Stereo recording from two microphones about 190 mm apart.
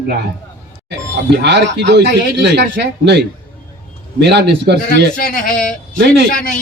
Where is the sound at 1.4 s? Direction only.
65° right (ahead or behind).